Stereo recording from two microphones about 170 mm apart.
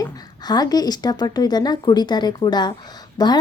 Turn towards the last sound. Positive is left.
turn(degrees=25)  # may be behind; listen again after turning